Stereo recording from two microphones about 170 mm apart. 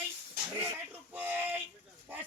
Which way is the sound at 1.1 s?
10° right (ahead or behind).